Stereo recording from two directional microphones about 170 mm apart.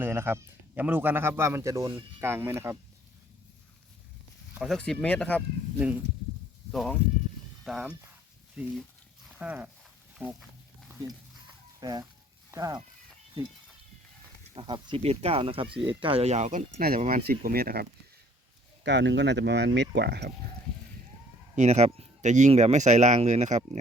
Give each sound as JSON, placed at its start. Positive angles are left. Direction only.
{"t": 0.0, "sound": "speech", "side_deg": -10}
{"t": 4.5, "sound": "speech", "side_deg": 0}
{"t": 6.7, "sound": "speech", "side_deg": 5}
{"t": 11.8, "sound": "speech", "side_deg": -25}
{"t": 14.5, "sound": "speech", "side_deg": -30}
{"t": 17.2, "sound": "speech", "side_deg": -60}
{"t": 18.8, "sound": "speech", "side_deg": -90}
{"t": 21.5, "sound": "speech", "side_deg": -45}